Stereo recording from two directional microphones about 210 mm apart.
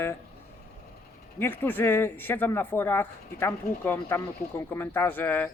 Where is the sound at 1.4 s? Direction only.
10° left (ahead or behind).